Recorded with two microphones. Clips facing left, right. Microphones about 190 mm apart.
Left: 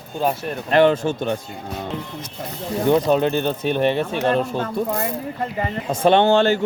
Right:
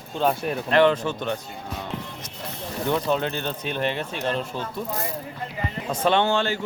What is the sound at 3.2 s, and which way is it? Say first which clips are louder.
Speech: left 8 dB; 10° left (ahead or behind).